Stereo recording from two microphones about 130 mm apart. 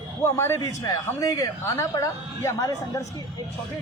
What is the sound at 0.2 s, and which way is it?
A man's voice, 20° left (ahead or behind).